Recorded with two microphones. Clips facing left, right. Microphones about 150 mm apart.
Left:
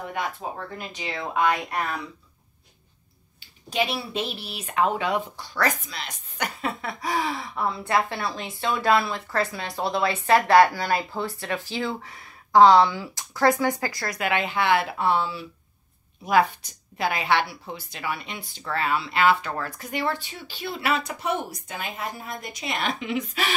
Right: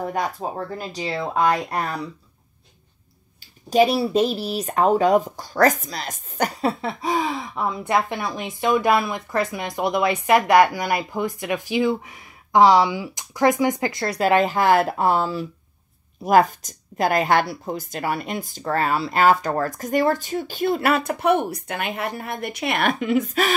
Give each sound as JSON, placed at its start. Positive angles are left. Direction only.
{"t": 0.0, "sound": "speech", "side_deg": -40}
{"t": 3.3, "sound": "speech", "side_deg": -40}